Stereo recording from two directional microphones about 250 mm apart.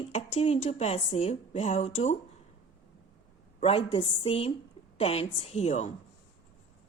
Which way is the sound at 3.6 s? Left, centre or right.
Left.